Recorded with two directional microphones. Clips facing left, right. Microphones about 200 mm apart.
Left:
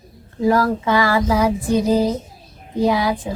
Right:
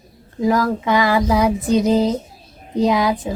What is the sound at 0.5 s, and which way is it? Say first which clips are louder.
Child singing: even; 15° right (ahead or behind).